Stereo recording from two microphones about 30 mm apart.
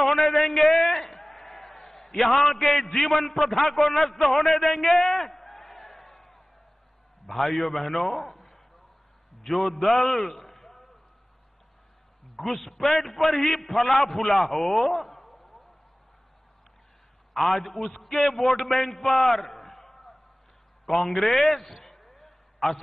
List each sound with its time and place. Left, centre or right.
0.0 s a man's voice: centre
5.0 s a sound: centre
7.2 s a man's voice: centre
12.4 s a man's voice: centre
17.3 s a man's voice: centre
20.8 s a sound: centre